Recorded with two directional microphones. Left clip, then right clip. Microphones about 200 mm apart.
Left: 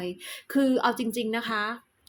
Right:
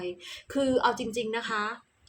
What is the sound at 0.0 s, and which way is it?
Speech, 35° left (ahead or behind).